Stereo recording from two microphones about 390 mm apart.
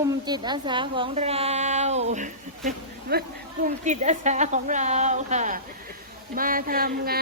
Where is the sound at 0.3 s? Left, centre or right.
Centre.